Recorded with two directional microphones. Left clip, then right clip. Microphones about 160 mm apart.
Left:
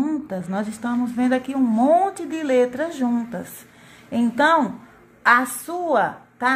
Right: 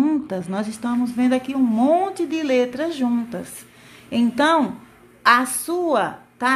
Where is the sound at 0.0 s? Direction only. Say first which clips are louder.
Right 4 dB; 25° right (ahead or behind).